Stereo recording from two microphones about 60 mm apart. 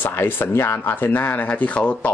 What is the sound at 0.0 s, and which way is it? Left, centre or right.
Speech, left.